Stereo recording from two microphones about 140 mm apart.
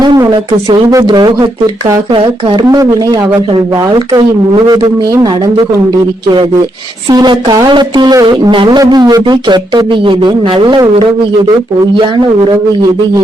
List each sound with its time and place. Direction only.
0.0 s speech: 30° right (ahead or behind)
6.2 s speech: 30° right (ahead or behind)
11.9 s speech: 35° right (ahead or behind)